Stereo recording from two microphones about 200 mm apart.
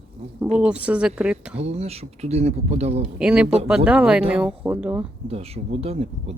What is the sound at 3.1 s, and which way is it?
Speech, 5° right (ahead or behind).